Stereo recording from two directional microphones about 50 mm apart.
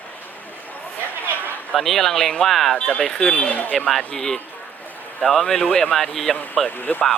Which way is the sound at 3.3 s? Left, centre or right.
Left.